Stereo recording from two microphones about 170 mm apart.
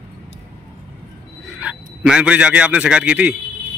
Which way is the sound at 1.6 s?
5° right (ahead or behind).